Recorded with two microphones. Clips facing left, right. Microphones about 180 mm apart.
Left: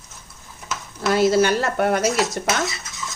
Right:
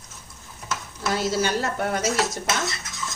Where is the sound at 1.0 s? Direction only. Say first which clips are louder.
Left 8 dB; 65° left (ahead or behind).